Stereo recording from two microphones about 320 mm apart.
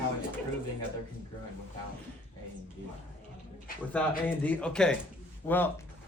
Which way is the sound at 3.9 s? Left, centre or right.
Centre.